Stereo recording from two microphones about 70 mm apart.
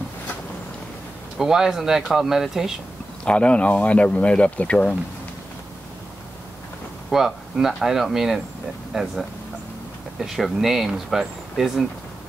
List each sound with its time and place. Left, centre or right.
1.4 s speech: centre
3.3 s speech: centre
7.1 s speech: centre
10.2 s speech: centre